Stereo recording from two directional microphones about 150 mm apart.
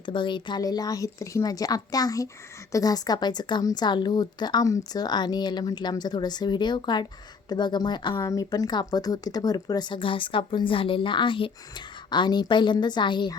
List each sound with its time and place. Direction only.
0.0 s a woman's voice: 35° left (ahead or behind)